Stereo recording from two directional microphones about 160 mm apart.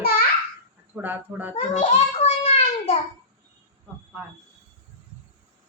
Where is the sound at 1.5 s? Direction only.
45° left (ahead or behind).